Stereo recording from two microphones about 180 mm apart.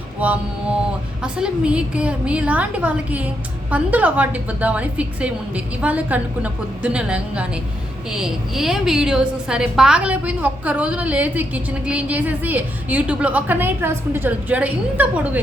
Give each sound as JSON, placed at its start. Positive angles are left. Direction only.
{"t": 0.2, "sound": "a woman's voice", "side_deg": -10}